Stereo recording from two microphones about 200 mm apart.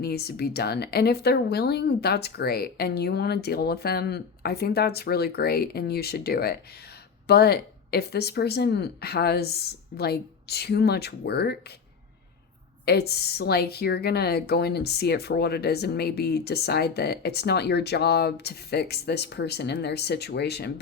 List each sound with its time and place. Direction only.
0.0 s speech: 50° left (ahead or behind)
12.8 s speech: 55° left (ahead or behind)